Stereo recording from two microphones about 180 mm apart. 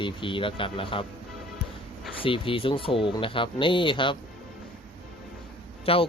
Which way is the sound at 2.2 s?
30° left (ahead or behind).